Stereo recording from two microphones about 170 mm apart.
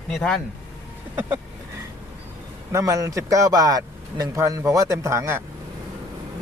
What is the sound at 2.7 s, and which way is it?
Speech, 20° right (ahead or behind).